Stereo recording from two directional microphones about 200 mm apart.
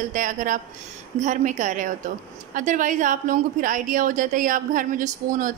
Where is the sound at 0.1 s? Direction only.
40° right (ahead or behind).